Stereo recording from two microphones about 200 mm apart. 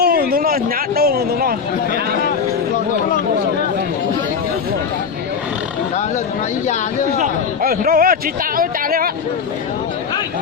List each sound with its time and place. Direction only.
0.0 s speech: 50° right (ahead or behind)
7.2 s speech: 50° right (ahead or behind)